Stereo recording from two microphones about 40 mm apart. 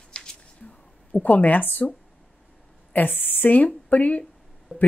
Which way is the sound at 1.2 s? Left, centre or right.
Left.